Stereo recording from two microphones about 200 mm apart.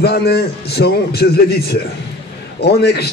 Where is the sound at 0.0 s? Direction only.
55° left (ahead or behind).